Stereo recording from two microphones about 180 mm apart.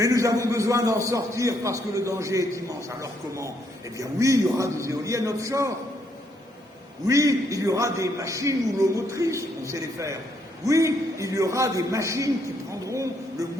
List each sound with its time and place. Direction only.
0.0 s a man's voice: 20° right (ahead or behind)
7.1 s a man's voice: 20° right (ahead or behind)